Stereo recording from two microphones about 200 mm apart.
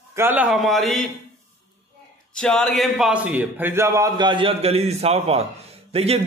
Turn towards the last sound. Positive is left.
turn(degrees=-30)  # may be behind; listen again after turning